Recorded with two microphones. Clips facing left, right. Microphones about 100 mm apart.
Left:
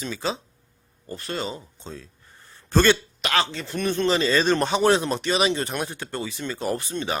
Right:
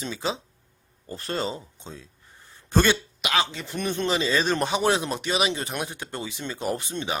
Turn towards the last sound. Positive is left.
turn(degrees=-20)  # may be behind; listen again after turning